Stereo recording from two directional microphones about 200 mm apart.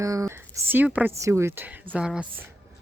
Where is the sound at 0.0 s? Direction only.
15° right (ahead or behind).